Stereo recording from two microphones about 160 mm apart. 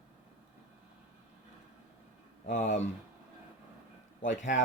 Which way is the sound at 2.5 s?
50° left (ahead or behind).